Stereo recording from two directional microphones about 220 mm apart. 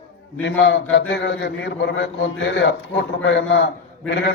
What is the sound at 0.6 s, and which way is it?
A man's voice, 50° left (ahead or behind).